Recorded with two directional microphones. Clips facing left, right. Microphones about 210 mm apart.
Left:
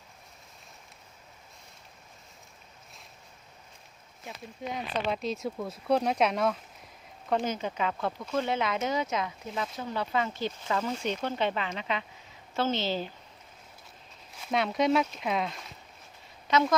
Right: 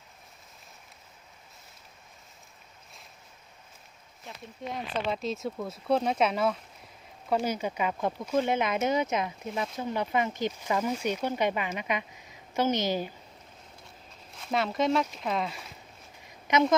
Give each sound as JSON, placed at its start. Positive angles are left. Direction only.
{"t": 4.6, "sound": "speech", "side_deg": 0}
{"t": 14.3, "sound": "speech", "side_deg": 0}
{"t": 16.2, "sound": "a sound", "side_deg": -20}